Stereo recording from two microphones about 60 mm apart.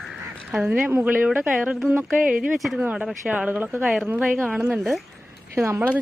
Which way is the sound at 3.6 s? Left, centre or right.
Right.